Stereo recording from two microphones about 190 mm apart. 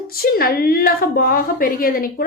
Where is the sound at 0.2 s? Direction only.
50° left (ahead or behind).